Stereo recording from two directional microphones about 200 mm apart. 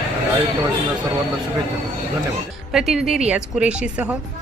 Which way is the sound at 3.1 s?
5° right (ahead or behind).